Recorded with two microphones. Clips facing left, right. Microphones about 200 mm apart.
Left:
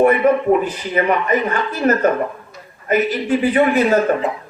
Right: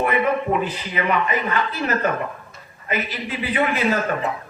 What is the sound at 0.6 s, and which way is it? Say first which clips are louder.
A man's voice: left 5 dB; 45° left (ahead or behind).